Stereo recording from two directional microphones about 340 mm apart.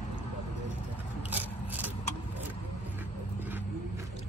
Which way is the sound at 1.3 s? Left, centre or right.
Centre.